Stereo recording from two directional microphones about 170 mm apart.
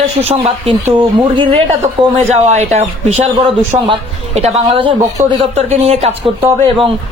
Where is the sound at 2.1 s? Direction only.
40° right (ahead or behind).